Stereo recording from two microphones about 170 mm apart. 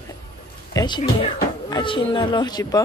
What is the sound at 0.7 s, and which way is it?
Speech, 25° left (ahead or behind).